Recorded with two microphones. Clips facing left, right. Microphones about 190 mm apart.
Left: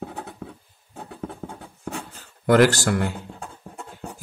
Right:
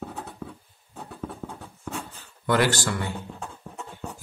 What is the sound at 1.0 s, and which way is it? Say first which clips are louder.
Writing: left 2 dB; 45° left (ahead or behind).